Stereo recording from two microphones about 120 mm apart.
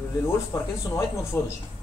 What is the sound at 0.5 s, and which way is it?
Speech, 25° left (ahead or behind).